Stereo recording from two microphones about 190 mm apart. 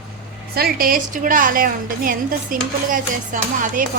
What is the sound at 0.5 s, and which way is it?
A woman's voice, 55° right (ahead or behind).